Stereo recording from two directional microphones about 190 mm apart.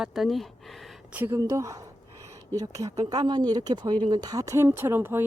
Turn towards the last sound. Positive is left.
turn(degrees=-10)  # may be behind; listen again after turning